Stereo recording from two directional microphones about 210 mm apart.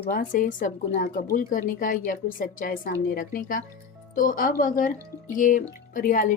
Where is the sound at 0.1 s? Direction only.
40° left (ahead or behind).